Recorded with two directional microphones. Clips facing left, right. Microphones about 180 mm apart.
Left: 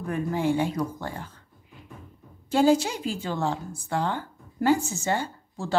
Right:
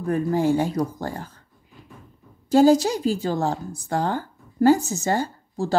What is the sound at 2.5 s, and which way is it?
A woman's voice, 40° right (ahead or behind).